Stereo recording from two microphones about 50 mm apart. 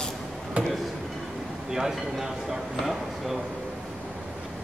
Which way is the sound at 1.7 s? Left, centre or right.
Centre.